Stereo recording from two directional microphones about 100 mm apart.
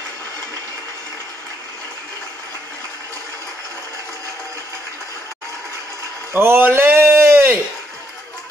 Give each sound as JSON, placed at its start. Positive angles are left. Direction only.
{"t": 6.3, "sound": "a man's voice", "side_deg": -20}